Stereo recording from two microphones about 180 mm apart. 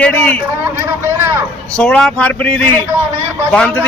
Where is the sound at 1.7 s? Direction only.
5° left (ahead or behind).